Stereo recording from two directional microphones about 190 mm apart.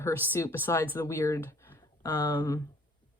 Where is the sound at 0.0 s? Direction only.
15° left (ahead or behind).